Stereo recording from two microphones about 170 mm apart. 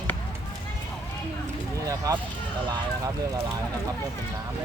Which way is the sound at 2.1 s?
20° right (ahead or behind).